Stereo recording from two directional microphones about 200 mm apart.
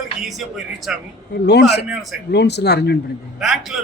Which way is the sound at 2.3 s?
55° left (ahead or behind).